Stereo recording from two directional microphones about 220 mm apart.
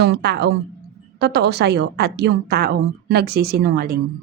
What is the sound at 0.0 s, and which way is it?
A woman's voice, 50° right (ahead or behind).